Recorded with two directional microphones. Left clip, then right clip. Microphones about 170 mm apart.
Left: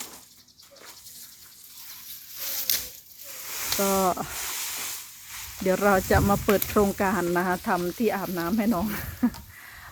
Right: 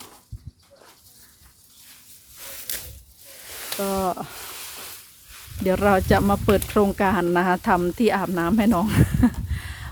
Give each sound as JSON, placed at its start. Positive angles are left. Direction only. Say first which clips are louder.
{"t": 3.8, "sound": "speech", "louder": "left 1 dB", "side_deg": 0}
{"t": 5.6, "sound": "speech", "louder": "right 3 dB", "side_deg": -25}